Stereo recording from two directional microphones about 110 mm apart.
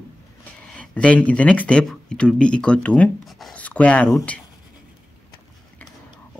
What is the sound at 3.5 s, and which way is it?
Speech, 15° left (ahead or behind).